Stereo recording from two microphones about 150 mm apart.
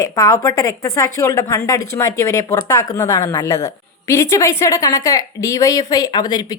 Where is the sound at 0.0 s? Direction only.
25° left (ahead or behind).